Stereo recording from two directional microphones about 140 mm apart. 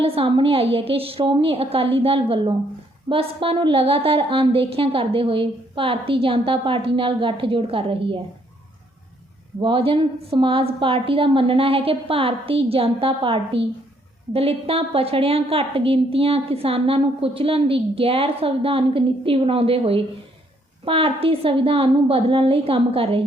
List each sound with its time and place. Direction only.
0.0 s a woman's voice: 40° right (ahead or behind)
9.6 s a woman's voice: 35° right (ahead or behind)